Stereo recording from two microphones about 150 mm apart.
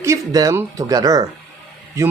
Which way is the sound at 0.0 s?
20° right (ahead or behind).